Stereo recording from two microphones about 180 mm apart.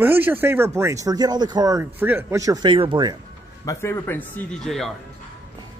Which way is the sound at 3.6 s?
15° left (ahead or behind).